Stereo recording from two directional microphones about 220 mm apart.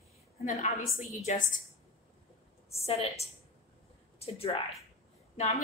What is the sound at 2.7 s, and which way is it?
A woman's voice, 25° left (ahead or behind).